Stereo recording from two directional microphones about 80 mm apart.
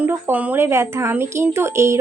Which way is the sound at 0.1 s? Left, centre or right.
Right.